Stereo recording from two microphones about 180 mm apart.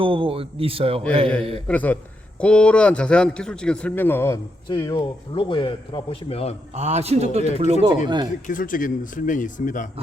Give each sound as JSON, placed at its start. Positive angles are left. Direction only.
{"t": 0.0, "sound": "a man's voice", "side_deg": -30}
{"t": 1.6, "sound": "a man's voice", "side_deg": 10}
{"t": 4.7, "sound": "a man's voice", "side_deg": 25}
{"t": 6.7, "sound": "a man's voice", "side_deg": -35}
{"t": 8.4, "sound": "speech", "side_deg": 50}